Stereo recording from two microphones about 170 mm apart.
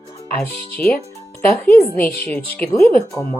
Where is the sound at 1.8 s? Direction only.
10° left (ahead or behind).